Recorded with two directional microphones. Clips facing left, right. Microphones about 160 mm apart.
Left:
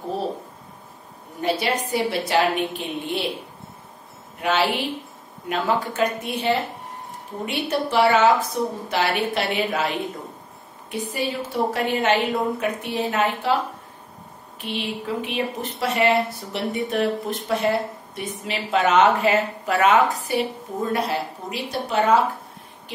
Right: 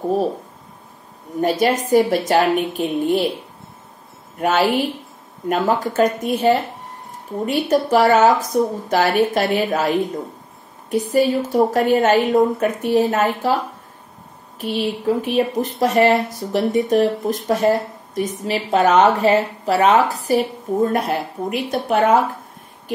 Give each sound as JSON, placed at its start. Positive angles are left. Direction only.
{"t": 1.4, "sound": "a woman's voice", "side_deg": -45}
{"t": 4.4, "sound": "a woman's voice", "side_deg": -45}
{"t": 14.6, "sound": "a woman's voice", "side_deg": -40}